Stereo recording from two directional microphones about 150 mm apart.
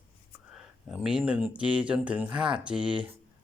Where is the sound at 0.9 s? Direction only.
5° right (ahead or behind).